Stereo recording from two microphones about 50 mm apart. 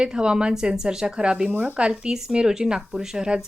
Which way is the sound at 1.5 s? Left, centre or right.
Right.